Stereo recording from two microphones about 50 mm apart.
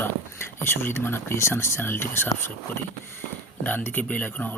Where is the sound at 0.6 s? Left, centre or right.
Left.